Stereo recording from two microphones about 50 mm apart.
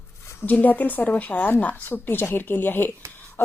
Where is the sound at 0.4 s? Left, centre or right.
Left.